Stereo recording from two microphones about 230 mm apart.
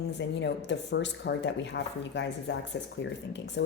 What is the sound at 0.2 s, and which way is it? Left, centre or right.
Speech, left.